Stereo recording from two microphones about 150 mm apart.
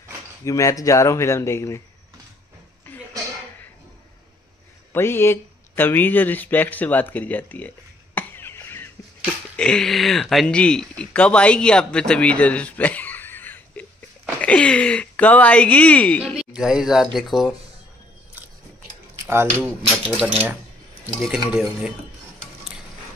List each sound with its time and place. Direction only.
0.5 s speech: 20° left (ahead or behind)
2.9 s a sound: 15° left (ahead or behind)
4.9 s speech: 15° left (ahead or behind)
9.2 s speech: 5° left (ahead or behind)
16.5 s speech: 5° right (ahead or behind)
20.2 s speech: 5° right (ahead or behind)